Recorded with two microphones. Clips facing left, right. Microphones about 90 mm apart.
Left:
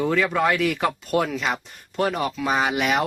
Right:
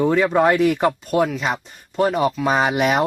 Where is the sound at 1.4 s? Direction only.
20° right (ahead or behind).